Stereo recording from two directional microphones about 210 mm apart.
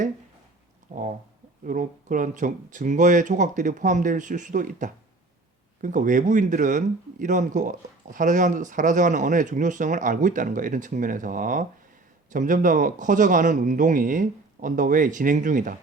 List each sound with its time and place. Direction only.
0.9 s speech: 35° right (ahead or behind)